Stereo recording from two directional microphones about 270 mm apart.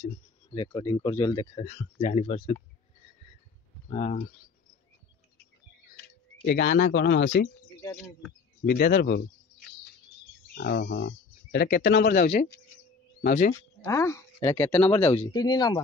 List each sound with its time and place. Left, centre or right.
0.0 s speech: centre
3.9 s speech: left
6.4 s speech: left
8.6 s speech: left
10.5 s speech: left
13.6 s speech: centre